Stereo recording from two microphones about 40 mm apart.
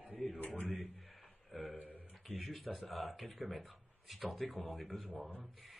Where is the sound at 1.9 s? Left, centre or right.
Left.